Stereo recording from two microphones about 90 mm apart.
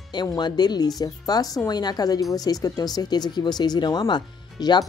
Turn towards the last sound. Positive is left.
turn(degrees=55)  # may be behind; listen again after turning